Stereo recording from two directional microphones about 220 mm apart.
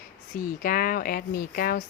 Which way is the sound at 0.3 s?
40° left (ahead or behind).